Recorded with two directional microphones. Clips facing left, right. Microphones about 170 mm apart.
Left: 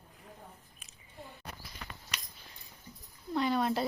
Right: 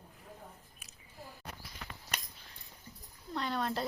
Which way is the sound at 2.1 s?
55° right (ahead or behind).